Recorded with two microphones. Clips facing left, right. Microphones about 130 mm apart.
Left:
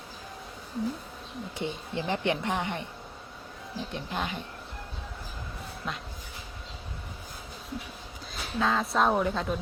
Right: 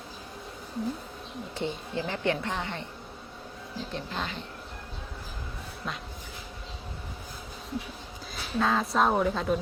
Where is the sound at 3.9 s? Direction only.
15° left (ahead or behind).